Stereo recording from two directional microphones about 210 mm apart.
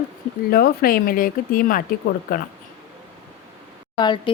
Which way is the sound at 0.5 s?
45° left (ahead or behind).